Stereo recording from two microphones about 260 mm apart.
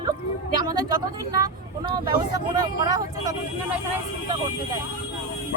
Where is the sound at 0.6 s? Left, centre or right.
Centre.